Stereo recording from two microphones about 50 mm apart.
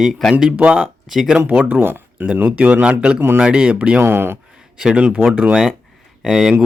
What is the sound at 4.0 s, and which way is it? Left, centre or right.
Speech, right.